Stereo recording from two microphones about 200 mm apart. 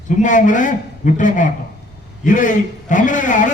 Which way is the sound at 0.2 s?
40° left (ahead or behind).